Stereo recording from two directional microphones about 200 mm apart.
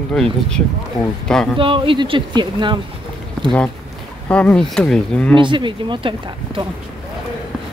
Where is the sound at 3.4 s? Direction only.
5° left (ahead or behind).